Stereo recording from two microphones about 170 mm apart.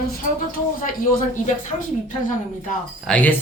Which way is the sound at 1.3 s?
50° left (ahead or behind).